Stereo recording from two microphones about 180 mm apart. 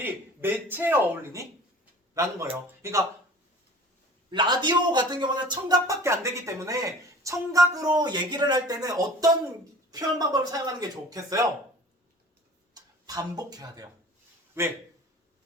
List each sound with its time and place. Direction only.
0.0 s speech: 10° right (ahead or behind)
4.3 s speech: 25° right (ahead or behind)
12.7 s speech: 20° right (ahead or behind)